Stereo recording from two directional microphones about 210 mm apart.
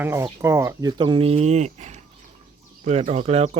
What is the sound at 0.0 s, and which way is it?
Speech, 10° right (ahead or behind).